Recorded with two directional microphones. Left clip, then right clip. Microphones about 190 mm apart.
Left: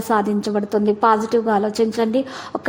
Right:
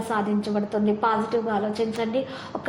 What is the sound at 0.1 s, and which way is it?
A woman's voice, 45° left (ahead or behind).